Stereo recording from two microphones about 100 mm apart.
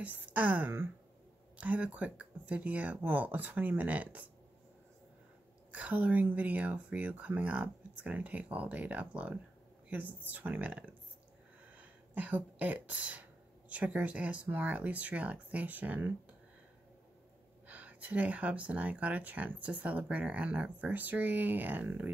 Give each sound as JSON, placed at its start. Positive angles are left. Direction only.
{"t": 0.0, "sound": "speech", "side_deg": -15}
{"t": 5.7, "sound": "speech", "side_deg": -15}
{"t": 17.6, "sound": "speech", "side_deg": -15}